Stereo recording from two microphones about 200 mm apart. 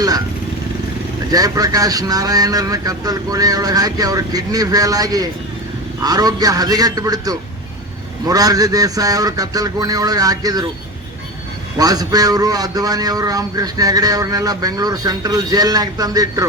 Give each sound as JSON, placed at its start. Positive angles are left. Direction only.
{"t": 1.3, "sound": "a man's voice", "side_deg": -20}
{"t": 11.8, "sound": "a man's voice", "side_deg": -20}